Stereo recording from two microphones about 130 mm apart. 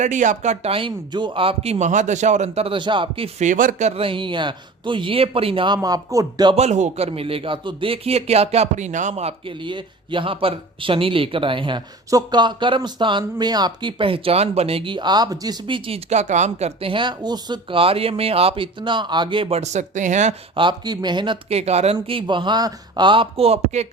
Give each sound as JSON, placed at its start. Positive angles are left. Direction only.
{"t": 0.0, "sound": "speech", "side_deg": -75}
{"t": 0.7, "sound": "a man's voice", "side_deg": -40}
{"t": 3.3, "sound": "speech", "side_deg": -75}
{"t": 6.6, "sound": "a man's voice", "side_deg": -60}
{"t": 16.0, "sound": "speech", "side_deg": -65}
{"t": 16.9, "sound": "a man's voice", "side_deg": -35}
{"t": 20.6, "sound": "speech", "side_deg": -35}
{"t": 21.5, "sound": "speech", "side_deg": -55}
{"t": 22.0, "sound": "speech", "side_deg": -40}